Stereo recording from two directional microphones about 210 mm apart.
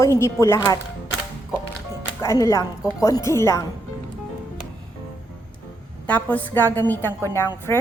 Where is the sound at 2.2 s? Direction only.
15° left (ahead or behind).